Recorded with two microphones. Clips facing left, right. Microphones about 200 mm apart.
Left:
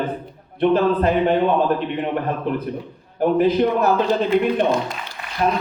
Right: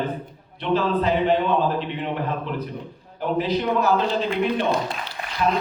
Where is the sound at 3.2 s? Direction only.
50° left (ahead or behind).